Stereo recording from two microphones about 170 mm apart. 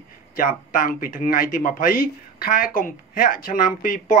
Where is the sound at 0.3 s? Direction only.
55° left (ahead or behind).